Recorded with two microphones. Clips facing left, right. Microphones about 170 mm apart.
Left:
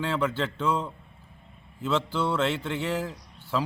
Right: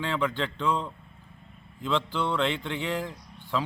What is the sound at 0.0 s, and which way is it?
Speech, 5° left (ahead or behind).